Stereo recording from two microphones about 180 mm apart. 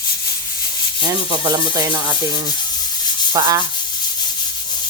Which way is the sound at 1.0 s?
25° right (ahead or behind).